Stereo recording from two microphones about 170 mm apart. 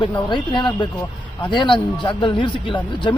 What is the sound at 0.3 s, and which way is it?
Speech, 25° left (ahead or behind).